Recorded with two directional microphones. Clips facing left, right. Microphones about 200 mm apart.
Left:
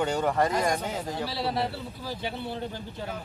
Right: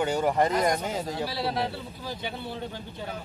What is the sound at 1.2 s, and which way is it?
Speech, centre (ahead or behind).